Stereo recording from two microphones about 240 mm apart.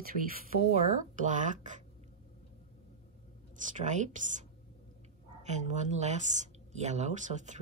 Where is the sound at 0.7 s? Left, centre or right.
Right.